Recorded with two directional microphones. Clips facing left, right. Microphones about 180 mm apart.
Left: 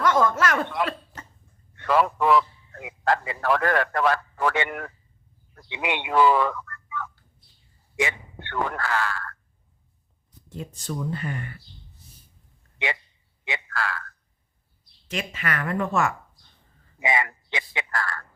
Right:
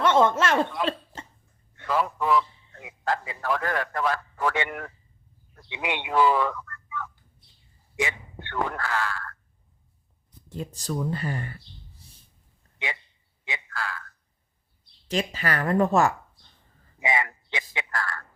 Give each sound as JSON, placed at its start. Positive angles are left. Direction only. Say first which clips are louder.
{"t": 0.0, "sound": "speech", "louder": "right 1 dB", "side_deg": -25}
{"t": 0.9, "sound": "cough", "louder": "right 3 dB", "side_deg": -30}
{"t": 1.7, "sound": "a man's voice", "louder": "left 5 dB", "side_deg": 75}
{"t": 10.6, "sound": "speech", "louder": "right 2 dB", "side_deg": -35}
{"t": 13.4, "sound": "telephone", "louder": "left 4 dB", "side_deg": 70}
{"t": 15.0, "sound": "speech", "louder": "right 3 dB", "side_deg": -35}
{"t": 17.0, "sound": "a sound", "louder": "left 1 dB", "side_deg": 70}